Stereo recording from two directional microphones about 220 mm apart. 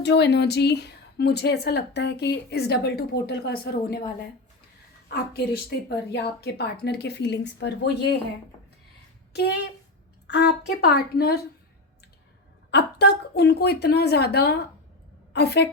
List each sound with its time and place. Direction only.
0.0 s a woman's voice: 50° left (ahead or behind)
9.3 s a woman's voice: 50° left (ahead or behind)
12.7 s a woman's voice: 50° left (ahead or behind)